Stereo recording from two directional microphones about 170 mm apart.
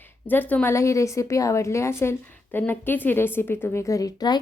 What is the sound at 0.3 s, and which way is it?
A woman's voice, 10° left (ahead or behind).